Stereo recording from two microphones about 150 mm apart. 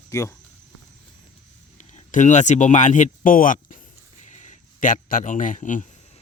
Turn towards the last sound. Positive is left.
turn(degrees=60)  # may be behind; listen again after turning